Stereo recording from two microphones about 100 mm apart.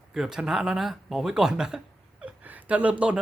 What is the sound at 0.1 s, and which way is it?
Speech, 5° right (ahead or behind).